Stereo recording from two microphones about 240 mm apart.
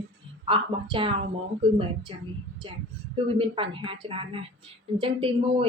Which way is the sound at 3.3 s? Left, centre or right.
Right.